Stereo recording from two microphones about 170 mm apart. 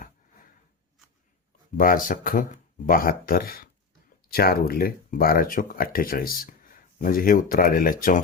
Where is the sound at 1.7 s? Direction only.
55° left (ahead or behind).